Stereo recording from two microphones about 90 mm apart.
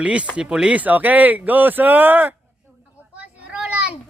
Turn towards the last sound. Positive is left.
turn(degrees=-10)  # may be behind; listen again after turning